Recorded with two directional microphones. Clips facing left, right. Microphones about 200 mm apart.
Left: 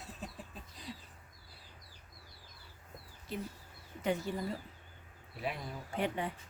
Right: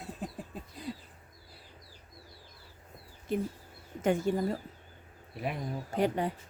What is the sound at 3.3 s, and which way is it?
Speech, 50° right (ahead or behind).